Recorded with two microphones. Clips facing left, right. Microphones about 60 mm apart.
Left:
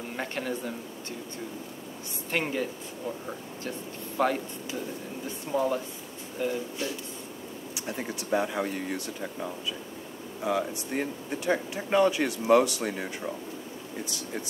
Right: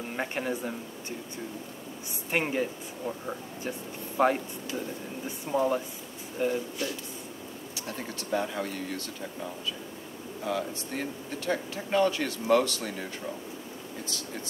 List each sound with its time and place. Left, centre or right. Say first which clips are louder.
0.1 s speech: right 1 dB; centre
2.3 s speech: right 1 dB; centre
5.5 s speech: right 1 dB; centre
7.7 s speech: left 3 dB; centre